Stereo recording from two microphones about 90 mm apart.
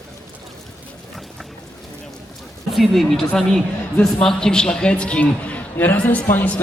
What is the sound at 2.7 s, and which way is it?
A man's voice, centre (ahead or behind).